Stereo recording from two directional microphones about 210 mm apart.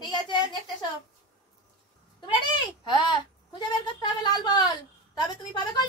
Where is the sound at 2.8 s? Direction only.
20° left (ahead or behind).